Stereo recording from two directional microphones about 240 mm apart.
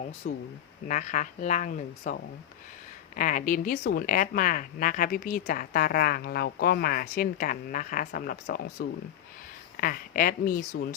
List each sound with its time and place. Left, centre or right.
0.2 s speech: left
3.2 s speech: left